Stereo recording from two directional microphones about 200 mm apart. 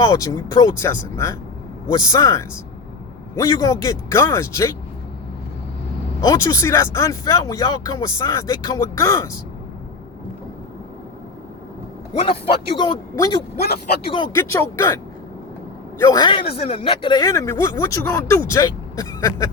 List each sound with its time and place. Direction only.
0.0 s speech: 15° left (ahead or behind)
6.2 s speech: 20° left (ahead or behind)
12.2 s a man's voice: 30° left (ahead or behind)
16.0 s a man's voice: 20° left (ahead or behind)